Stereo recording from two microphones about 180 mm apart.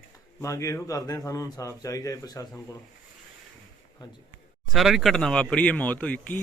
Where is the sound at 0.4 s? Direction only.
15° left (ahead or behind).